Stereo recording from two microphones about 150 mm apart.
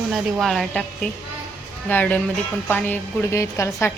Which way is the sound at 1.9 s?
10° left (ahead or behind).